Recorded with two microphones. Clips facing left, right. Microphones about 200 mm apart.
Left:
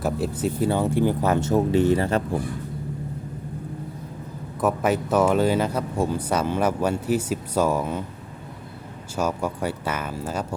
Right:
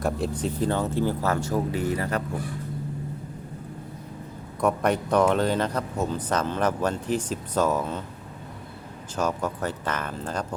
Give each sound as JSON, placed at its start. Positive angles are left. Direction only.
{"t": 0.0, "sound": "speech", "side_deg": 5}
{"t": 4.6, "sound": "speech", "side_deg": 5}
{"t": 9.1, "sound": "speech", "side_deg": 10}